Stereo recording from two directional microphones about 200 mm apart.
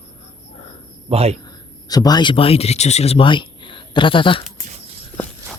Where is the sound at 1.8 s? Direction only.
20° left (ahead or behind).